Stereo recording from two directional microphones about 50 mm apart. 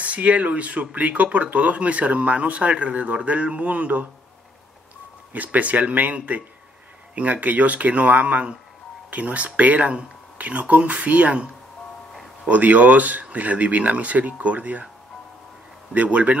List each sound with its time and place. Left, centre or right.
0.0 s speech: right
5.3 s speech: right
12.4 s speech: right
15.9 s speech: right